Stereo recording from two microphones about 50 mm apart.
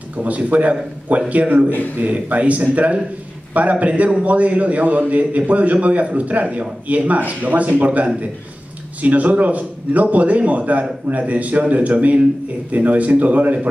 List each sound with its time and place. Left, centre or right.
0.2 s a man's voice: right